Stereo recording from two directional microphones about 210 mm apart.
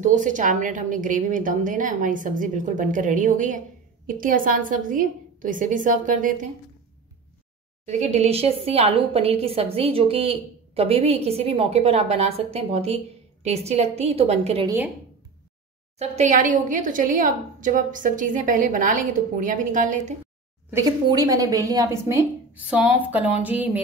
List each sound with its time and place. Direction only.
0.0 s a woman's voice: 35° right (ahead or behind)
7.8 s a woman's voice: 35° right (ahead or behind)
16.0 s a woman's voice: 35° right (ahead or behind)
20.7 s a woman's voice: 20° right (ahead or behind)